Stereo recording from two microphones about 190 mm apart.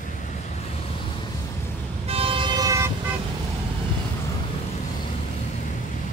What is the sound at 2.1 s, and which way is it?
Vehicle, 30° right (ahead or behind).